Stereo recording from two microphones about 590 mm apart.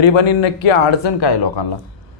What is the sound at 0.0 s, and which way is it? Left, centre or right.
Speech, left.